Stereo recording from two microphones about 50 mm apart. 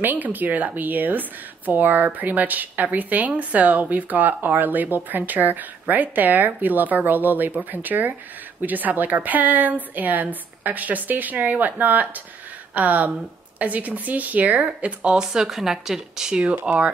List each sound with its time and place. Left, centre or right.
0.0 s speech: right